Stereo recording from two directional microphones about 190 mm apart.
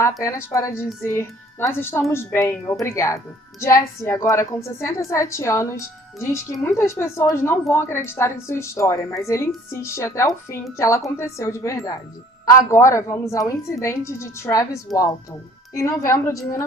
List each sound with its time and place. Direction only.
0.2 s speech: 15° left (ahead or behind)